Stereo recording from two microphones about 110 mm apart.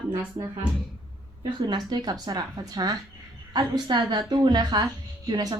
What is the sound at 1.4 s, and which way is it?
A woman's voice, 45° right (ahead or behind).